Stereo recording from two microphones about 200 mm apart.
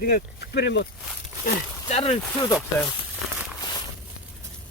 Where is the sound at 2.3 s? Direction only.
15° left (ahead or behind).